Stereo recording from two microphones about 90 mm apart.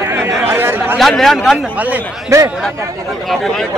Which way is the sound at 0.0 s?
30° right (ahead or behind).